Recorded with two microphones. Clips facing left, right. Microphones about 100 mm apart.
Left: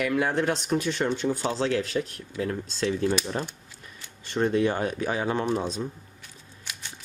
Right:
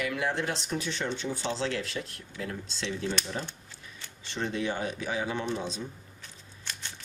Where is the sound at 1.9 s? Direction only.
60° left (ahead or behind).